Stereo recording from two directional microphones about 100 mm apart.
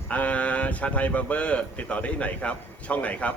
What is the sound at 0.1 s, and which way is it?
Speech, 15° left (ahead or behind).